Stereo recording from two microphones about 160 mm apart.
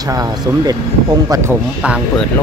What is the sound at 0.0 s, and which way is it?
Speech, 25° right (ahead or behind).